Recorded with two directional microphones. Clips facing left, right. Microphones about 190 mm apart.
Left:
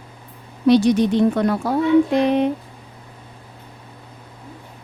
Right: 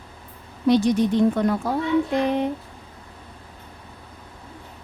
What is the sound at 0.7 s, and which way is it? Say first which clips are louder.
Speech: left 4 dB; 80° left.